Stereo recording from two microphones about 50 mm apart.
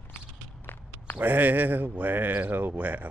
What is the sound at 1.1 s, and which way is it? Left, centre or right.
Speech, right.